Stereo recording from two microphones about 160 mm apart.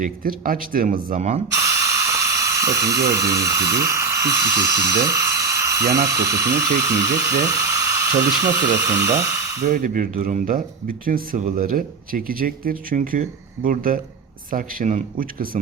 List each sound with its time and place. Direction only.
0.0 s speech: 60° right (ahead or behind)
1.5 s speech: 20° right (ahead or behind)
5.0 s electric toothbrush: 20° right (ahead or behind)
6.1 s a sound: 20° right (ahead or behind)
9.6 s speech: 65° right (ahead or behind)